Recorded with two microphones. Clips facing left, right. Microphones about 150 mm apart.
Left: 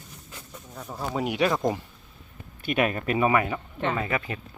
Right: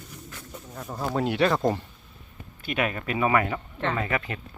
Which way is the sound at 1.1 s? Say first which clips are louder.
Right 1 dB; 10° left (ahead or behind).